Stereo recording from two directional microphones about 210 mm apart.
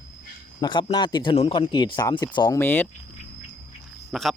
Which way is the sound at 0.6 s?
20° left (ahead or behind).